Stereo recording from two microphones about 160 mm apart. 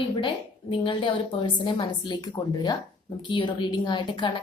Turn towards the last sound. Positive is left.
turn(degrees=30)  # may be behind; listen again after turning